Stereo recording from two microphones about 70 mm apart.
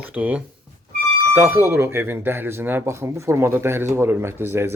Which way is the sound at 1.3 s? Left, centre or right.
Right.